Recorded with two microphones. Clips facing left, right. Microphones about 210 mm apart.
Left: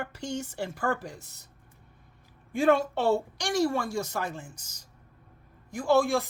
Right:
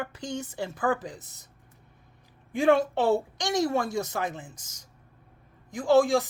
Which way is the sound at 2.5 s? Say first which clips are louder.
Right 1 dB; 15° right (ahead or behind).